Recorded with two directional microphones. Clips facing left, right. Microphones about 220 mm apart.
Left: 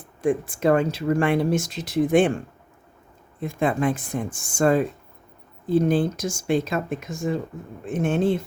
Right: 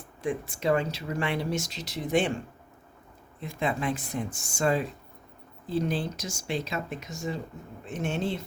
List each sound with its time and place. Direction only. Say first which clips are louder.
0.2 s speech: left 8 dB; 50° left (ahead or behind)
3.4 s speech: left 7 dB; 50° left (ahead or behind)